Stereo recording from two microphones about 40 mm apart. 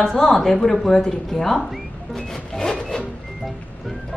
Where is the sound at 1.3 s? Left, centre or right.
Centre.